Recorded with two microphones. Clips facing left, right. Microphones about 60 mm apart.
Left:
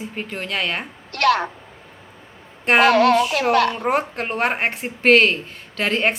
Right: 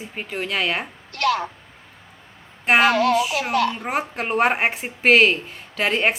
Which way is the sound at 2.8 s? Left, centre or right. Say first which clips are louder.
Left 3 dB; left.